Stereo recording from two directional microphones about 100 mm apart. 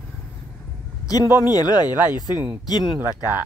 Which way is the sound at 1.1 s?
40° left (ahead or behind).